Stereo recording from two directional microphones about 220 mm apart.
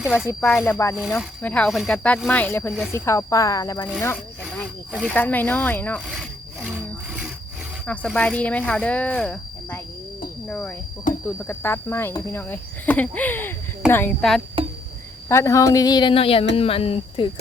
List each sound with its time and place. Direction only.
0.4 s speech: 10° left (ahead or behind)
7.9 s speech: 5° left (ahead or behind)
11.1 s speech: 35° left (ahead or behind)
11.4 s speech: 10° left (ahead or behind)
15.3 s speech: 15° left (ahead or behind)